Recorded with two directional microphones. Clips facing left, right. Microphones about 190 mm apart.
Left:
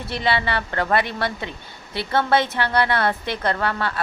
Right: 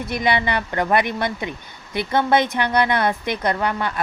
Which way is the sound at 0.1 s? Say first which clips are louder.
Right 1 dB; 15° right (ahead or behind).